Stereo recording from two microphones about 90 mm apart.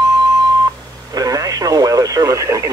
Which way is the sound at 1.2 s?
40° right (ahead or behind).